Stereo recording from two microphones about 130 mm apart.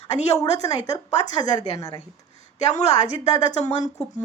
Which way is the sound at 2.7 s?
60° left (ahead or behind).